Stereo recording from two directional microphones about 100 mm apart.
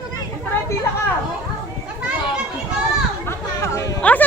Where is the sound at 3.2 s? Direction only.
30° left (ahead or behind).